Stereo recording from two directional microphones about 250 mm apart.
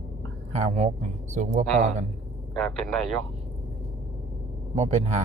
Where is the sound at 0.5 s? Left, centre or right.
Right.